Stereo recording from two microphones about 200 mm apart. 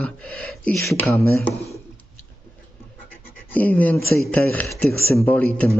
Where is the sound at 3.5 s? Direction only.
5° left (ahead or behind).